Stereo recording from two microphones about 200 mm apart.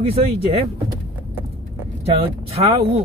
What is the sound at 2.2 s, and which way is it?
Speech, 30° right (ahead or behind).